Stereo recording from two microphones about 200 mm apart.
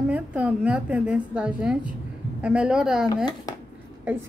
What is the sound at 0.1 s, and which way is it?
A woman's voice, 5° right (ahead or behind).